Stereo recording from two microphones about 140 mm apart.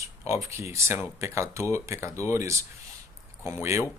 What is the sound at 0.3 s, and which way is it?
Speech, 20° right (ahead or behind).